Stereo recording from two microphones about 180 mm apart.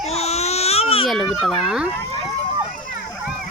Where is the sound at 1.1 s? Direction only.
Centre (ahead or behind).